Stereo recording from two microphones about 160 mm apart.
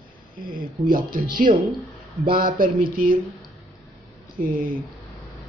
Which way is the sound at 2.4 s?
60° right (ahead or behind).